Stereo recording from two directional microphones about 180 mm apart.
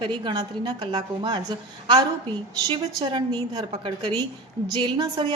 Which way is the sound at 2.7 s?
25° right (ahead or behind).